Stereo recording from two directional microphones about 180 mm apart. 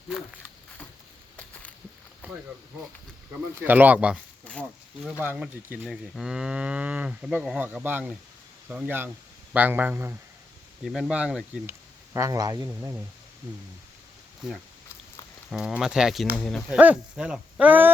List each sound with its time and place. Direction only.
1.4 s a sound: 10° left (ahead or behind)
3.3 s speech: 10° right (ahead or behind)
4.5 s a sound: 10° left (ahead or behind)
5.2 s moo: 10° right (ahead or behind)
7.3 s speech: centre (ahead or behind)
10.8 s moo: 5° right (ahead or behind)
12.1 s speech: 20° right (ahead or behind)
15.4 s moo: 5° right (ahead or behind)
16.6 s speech: 5° right (ahead or behind)